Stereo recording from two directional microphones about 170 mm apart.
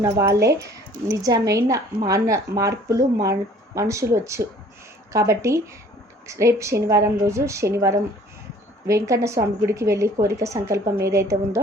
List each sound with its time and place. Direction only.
0.0 s a woman's voice: 15° right (ahead or behind)